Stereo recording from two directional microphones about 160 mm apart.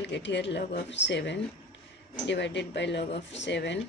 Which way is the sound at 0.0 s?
90° left.